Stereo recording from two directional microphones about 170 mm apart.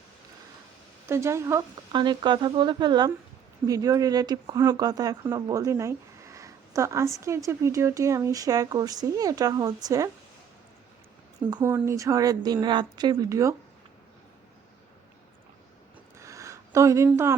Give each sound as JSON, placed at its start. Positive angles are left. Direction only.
{"t": 1.0, "sound": "a woman's voice", "side_deg": -15}
{"t": 1.9, "sound": "speech", "side_deg": -25}
{"t": 11.5, "sound": "speech", "side_deg": -15}
{"t": 16.1, "sound": "a sound", "side_deg": -20}